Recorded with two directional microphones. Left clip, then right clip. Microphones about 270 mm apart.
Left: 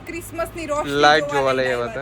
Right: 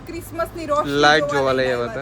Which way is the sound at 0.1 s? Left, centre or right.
Centre.